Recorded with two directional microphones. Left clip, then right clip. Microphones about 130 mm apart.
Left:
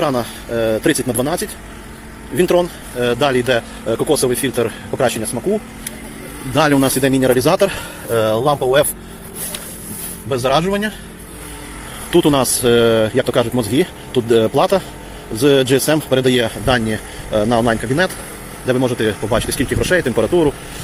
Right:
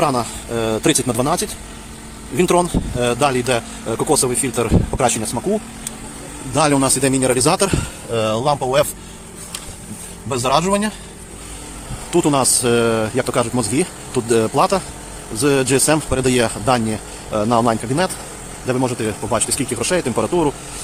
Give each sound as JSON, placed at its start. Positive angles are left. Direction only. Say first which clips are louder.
{"t": 0.0, "sound": "speech", "louder": "even", "side_deg": -30}
{"t": 3.1, "sound": "speech", "louder": "left 2 dB", "side_deg": -20}
{"t": 6.5, "sound": "speech", "louder": "left 2 dB", "side_deg": -5}
{"t": 6.9, "sound": "speech", "louder": "left 3 dB", "side_deg": -15}
{"t": 10.2, "sound": "speech", "louder": "left 1 dB", "side_deg": -20}
{"t": 10.6, "sound": "speech", "louder": "even", "side_deg": -30}
{"t": 12.1, "sound": "speech", "louder": "left 2 dB", "side_deg": 0}